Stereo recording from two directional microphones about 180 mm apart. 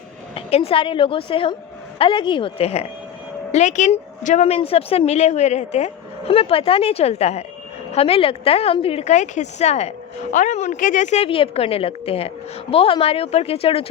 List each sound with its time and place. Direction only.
0.3 s a woman's voice: 30° left (ahead or behind)